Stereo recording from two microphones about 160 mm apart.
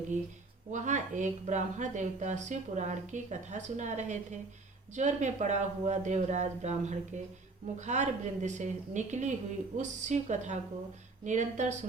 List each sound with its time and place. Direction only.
0.7 s a woman's voice: 50° right (ahead or behind)